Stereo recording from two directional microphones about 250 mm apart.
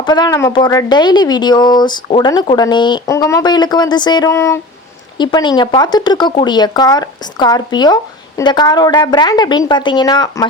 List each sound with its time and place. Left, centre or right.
0.0 s speech: centre